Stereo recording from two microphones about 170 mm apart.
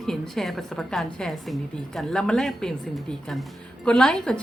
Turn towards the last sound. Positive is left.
turn(degrees=5)  # may be behind; listen again after turning